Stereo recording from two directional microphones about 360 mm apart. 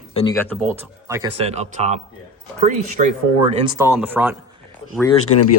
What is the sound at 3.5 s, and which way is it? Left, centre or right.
Speech, centre.